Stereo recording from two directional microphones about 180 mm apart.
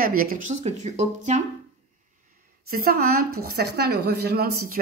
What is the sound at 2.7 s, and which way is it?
A woman's voice, 55° right (ahead or behind).